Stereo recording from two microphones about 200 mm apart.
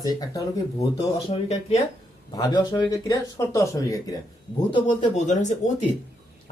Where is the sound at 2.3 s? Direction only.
20° left (ahead or behind).